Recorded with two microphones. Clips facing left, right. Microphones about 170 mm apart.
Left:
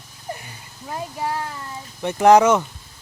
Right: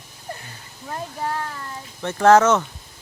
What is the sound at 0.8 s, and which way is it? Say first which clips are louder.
Speech: left 1 dB; 10° left (ahead or behind).